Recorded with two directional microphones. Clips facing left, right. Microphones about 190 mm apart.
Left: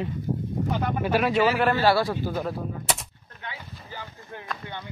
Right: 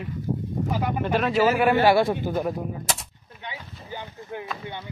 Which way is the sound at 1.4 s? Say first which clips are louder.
Right 6 dB; 10° right (ahead or behind).